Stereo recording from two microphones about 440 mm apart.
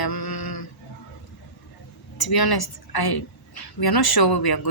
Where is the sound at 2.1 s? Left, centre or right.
Left.